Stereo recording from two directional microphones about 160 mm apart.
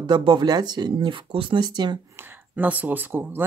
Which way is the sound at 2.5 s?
10° right (ahead or behind).